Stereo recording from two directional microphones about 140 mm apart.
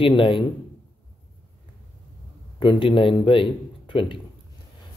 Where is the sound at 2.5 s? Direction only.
35° left (ahead or behind).